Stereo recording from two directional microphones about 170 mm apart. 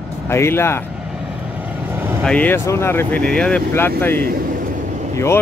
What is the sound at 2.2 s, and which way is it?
Speech, 5° left (ahead or behind).